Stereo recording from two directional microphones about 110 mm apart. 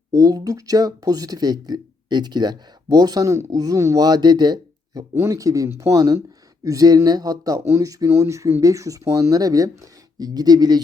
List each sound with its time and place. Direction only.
0.1 s speech: 35° right (ahead or behind)
5.1 s speech: 25° right (ahead or behind)